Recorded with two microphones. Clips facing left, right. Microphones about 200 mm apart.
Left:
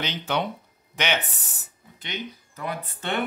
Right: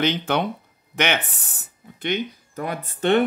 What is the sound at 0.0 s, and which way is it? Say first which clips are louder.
Speech: right 6 dB; 55° right (ahead or behind).